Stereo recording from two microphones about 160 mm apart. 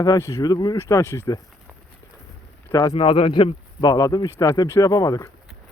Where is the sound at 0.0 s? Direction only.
20° left (ahead or behind).